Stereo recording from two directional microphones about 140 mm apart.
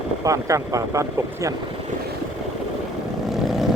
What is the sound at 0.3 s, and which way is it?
Speech, 25° right (ahead or behind).